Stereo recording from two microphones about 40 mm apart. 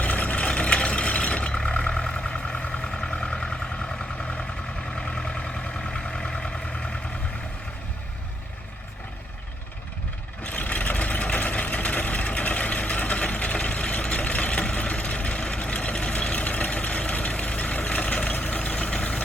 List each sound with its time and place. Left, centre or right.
0.0 s vehicle: left
0.4 s vehicle: left
5.1 s vehicle: left
10.4 s vehicle: left